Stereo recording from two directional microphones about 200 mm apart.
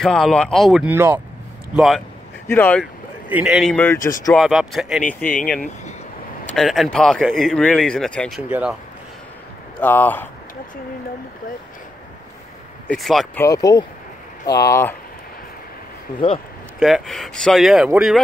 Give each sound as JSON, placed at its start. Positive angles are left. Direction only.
{"t": 0.0, "sound": "speech", "side_deg": 5}
{"t": 2.4, "sound": "speech", "side_deg": 10}
{"t": 2.8, "sound": "speech", "side_deg": -5}
{"t": 4.0, "sound": "speech", "side_deg": 45}
{"t": 4.3, "sound": "speech", "side_deg": 0}
{"t": 6.5, "sound": "speech", "side_deg": 0}
{"t": 8.5, "sound": "speech", "side_deg": -10}
{"t": 9.8, "sound": "speech", "side_deg": 10}
{"t": 12.8, "sound": "speech", "side_deg": 0}
{"t": 13.4, "sound": "speech", "side_deg": 15}
{"t": 16.1, "sound": "speech", "side_deg": 45}
{"t": 16.8, "sound": "speech", "side_deg": 0}